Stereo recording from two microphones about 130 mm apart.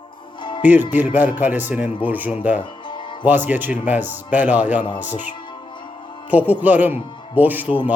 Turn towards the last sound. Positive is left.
turn(degrees=-15)  # may be behind; listen again after turning